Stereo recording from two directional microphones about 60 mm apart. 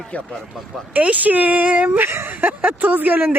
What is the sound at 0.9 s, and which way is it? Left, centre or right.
Speech, right.